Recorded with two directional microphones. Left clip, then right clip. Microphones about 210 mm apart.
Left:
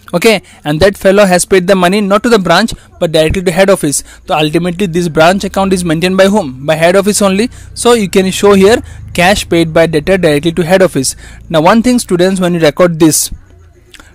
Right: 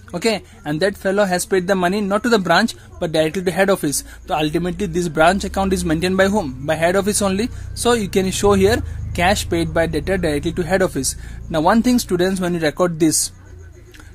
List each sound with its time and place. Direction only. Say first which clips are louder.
0.1 s speech: left 12 dB; 35° left (ahead or behind)